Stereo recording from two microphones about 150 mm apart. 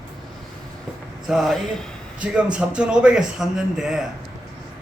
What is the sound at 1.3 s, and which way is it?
A man's voice, centre (ahead or behind).